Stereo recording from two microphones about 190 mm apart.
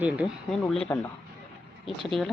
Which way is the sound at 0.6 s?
5° left (ahead or behind).